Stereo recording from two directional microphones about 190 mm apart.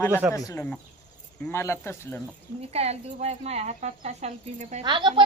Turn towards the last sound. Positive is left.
turn(degrees=-25)  # may be behind; listen again after turning